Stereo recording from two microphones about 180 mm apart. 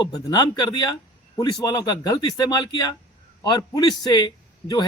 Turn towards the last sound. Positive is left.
turn(degrees=20)  # may be behind; listen again after turning